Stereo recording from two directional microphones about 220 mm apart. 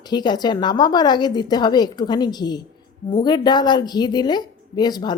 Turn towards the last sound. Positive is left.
turn(degrees=20)  # may be behind; listen again after turning